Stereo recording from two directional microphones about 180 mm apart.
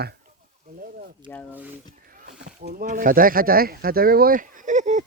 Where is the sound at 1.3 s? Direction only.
10° left (ahead or behind).